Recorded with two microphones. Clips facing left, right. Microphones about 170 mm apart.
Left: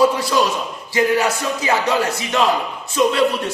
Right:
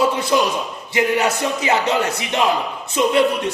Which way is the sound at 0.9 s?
20° right (ahead or behind).